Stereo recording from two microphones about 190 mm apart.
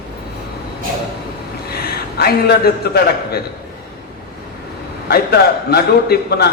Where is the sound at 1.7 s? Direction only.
55° left (ahead or behind).